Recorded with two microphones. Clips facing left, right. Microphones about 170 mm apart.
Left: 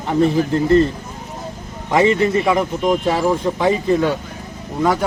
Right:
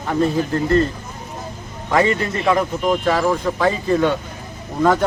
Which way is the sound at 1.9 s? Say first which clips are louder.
Left 3 dB; 20° left (ahead or behind).